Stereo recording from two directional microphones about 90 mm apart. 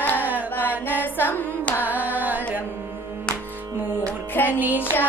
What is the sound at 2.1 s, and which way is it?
Carnatic music, 20° right (ahead or behind).